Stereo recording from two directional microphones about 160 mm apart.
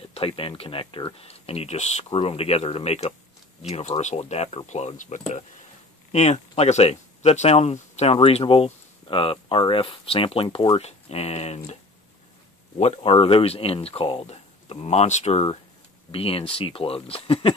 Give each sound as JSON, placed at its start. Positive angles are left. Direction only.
{"t": 0.1, "sound": "speech", "side_deg": 35}